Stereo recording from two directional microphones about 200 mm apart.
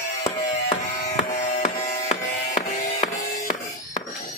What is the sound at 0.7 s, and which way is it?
Music, 35° left (ahead or behind).